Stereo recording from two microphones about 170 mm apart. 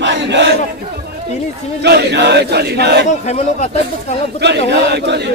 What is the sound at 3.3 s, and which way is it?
Speech, 40° left (ahead or behind).